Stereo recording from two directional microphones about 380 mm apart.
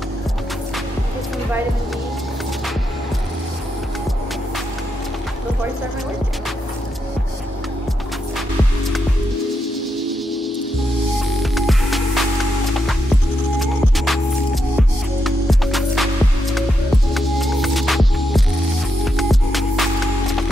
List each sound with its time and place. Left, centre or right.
9.9 s music: centre
13.6 s music: centre